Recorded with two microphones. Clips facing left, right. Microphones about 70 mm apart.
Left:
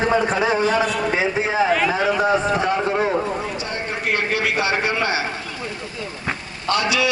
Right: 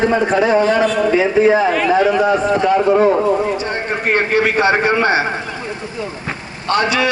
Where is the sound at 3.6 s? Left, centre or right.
Right.